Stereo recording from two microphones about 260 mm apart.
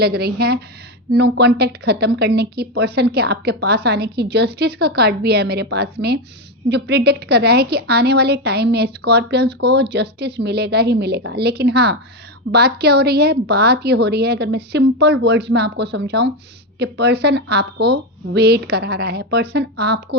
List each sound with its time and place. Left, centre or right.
0.0 s a woman's voice: right